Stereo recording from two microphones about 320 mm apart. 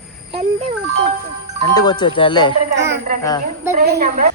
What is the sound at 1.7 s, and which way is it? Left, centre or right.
Speech, centre.